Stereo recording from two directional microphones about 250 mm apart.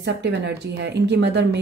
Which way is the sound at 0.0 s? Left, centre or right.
Right.